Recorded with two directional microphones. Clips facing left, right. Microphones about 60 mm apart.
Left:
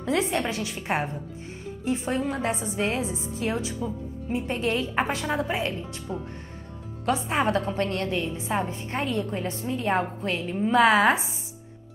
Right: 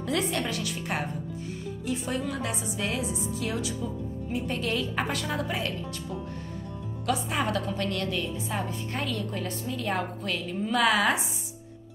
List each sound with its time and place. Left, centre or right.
0.0 s a woman's voice: left